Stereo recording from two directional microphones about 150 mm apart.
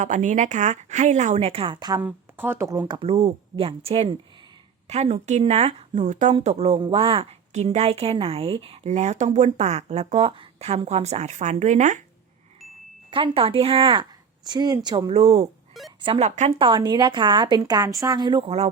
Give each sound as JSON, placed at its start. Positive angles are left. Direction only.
{"t": 0.0, "sound": "a woman's voice", "side_deg": -55}
{"t": 2.0, "sound": "a woman's voice", "side_deg": -15}
{"t": 6.7, "sound": "a woman's voice", "side_deg": -35}
{"t": 13.1, "sound": "speech", "side_deg": -35}
{"t": 15.1, "sound": "a woman's voice", "side_deg": -45}
{"t": 16.6, "sound": "speech", "side_deg": -30}